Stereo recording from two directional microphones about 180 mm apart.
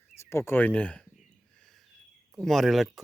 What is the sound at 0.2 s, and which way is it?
Speech, 15° left (ahead or behind).